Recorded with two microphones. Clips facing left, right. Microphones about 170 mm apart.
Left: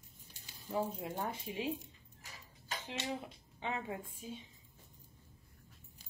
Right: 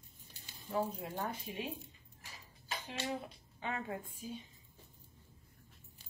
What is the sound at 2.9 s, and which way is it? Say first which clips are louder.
Speech: right 1 dB; 20° left (ahead or behind).